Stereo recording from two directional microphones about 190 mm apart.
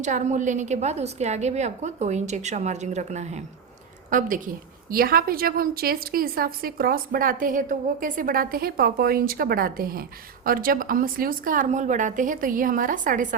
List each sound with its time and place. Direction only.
0.0 s a woman's voice: 40° right (ahead or behind)